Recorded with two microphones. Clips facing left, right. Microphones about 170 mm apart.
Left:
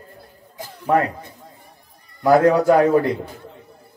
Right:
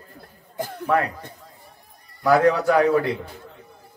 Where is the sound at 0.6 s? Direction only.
55° right (ahead or behind).